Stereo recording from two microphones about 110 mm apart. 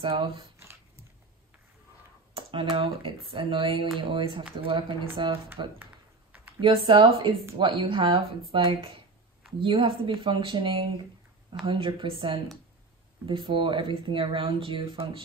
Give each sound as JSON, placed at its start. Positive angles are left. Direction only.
{"t": 0.0, "sound": "speech", "side_deg": -55}
{"t": 0.6, "sound": "a sound", "side_deg": -25}
{"t": 2.3, "sound": "speech", "side_deg": -55}
{"t": 6.6, "sound": "speech", "side_deg": -55}